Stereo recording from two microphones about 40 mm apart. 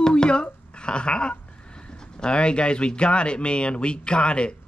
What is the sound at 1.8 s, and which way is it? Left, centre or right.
Speech, left.